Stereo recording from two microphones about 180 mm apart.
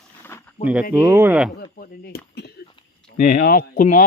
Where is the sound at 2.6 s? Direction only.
25° left (ahead or behind).